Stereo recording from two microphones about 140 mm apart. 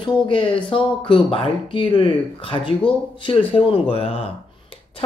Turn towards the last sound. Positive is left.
turn(degrees=45)  # may be behind; listen again after turning